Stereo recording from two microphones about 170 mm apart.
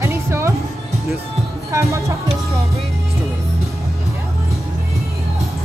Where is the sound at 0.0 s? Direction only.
15° right (ahead or behind).